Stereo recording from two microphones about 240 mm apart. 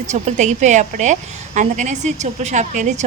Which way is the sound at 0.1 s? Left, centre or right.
Right.